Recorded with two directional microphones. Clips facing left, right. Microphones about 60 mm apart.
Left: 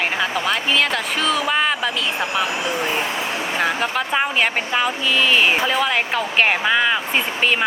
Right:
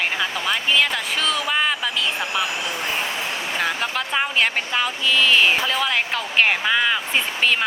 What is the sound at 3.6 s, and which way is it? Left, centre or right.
Speech, centre.